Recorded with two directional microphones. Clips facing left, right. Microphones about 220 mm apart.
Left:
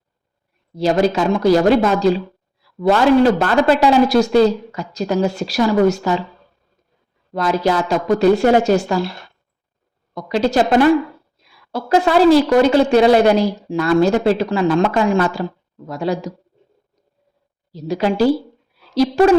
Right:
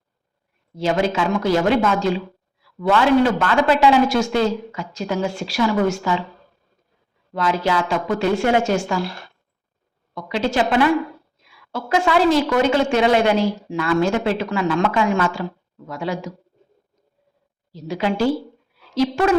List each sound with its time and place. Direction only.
0.8 s speech: 40° left (ahead or behind)
7.3 s speech: 40° left (ahead or behind)
10.2 s speech: 40° left (ahead or behind)
17.7 s speech: 40° left (ahead or behind)